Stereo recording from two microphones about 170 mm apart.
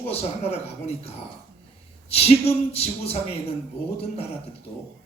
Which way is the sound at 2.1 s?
35° left (ahead or behind).